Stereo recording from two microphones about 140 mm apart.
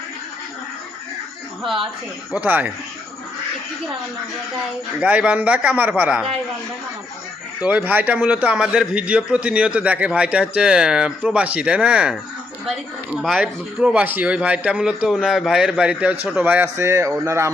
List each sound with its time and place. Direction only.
2.3 s a man's voice: 10° right (ahead or behind)
4.9 s a man's voice: 10° right (ahead or behind)
7.6 s a man's voice: 10° right (ahead or behind)
13.4 s a man's voice: 10° right (ahead or behind)